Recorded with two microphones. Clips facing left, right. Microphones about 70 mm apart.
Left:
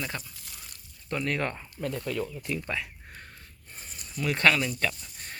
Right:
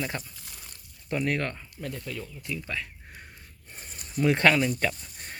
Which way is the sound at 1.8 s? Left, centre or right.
Left.